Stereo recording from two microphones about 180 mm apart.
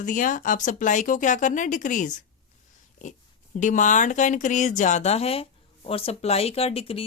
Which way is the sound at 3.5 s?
45° left (ahead or behind).